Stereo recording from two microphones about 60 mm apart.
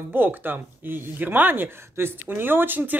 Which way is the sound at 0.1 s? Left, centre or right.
Right.